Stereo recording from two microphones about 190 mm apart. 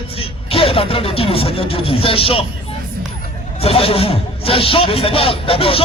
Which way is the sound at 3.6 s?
30° left (ahead or behind).